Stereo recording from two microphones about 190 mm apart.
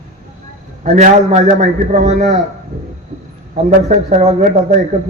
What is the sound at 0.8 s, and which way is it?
A man's voice, 40° right (ahead or behind).